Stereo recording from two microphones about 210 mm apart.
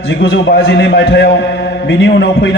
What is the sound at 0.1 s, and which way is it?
A man's voice, 55° left (ahead or behind).